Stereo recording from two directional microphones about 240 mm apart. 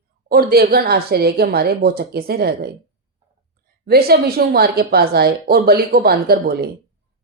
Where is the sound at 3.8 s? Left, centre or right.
Right.